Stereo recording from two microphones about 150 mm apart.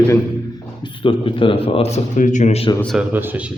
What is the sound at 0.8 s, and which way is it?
Speech, 35° left (ahead or behind).